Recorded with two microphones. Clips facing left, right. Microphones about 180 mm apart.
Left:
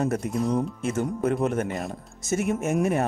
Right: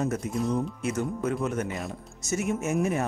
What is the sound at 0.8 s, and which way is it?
Speech, 50° left (ahead or behind).